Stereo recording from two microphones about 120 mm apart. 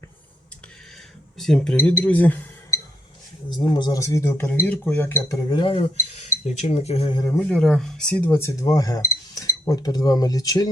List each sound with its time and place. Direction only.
1.4 s speech: 5° left (ahead or behind)
3.5 s speech: 40° left (ahead or behind); by 5.4 s 20° left (ahead or behind)
5.5 s speech: 45° left (ahead or behind)
7.3 s speech: 15° left (ahead or behind); by 10.7 s 30° left (ahead or behind)